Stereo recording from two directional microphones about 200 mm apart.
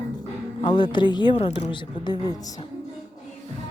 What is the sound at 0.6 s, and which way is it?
Speech, 25° left (ahead or behind).